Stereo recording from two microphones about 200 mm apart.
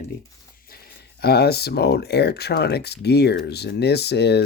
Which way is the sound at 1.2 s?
55° left (ahead or behind).